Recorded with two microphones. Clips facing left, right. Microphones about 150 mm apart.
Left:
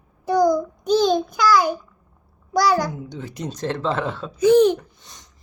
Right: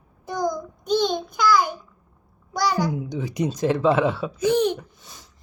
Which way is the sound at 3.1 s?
15° right (ahead or behind).